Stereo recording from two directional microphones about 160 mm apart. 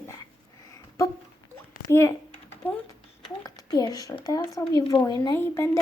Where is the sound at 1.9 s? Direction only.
15° left (ahead or behind).